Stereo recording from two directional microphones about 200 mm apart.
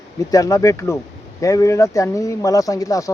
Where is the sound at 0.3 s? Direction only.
15° left (ahead or behind).